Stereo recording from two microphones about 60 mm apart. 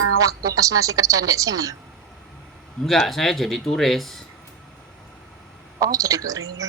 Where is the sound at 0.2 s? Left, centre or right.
Right.